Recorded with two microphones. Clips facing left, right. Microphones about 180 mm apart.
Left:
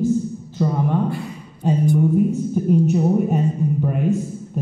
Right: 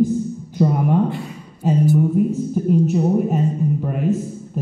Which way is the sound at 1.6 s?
5° right (ahead or behind).